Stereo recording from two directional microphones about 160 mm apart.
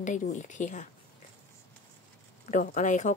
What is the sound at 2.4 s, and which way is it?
Speech, 50° left (ahead or behind).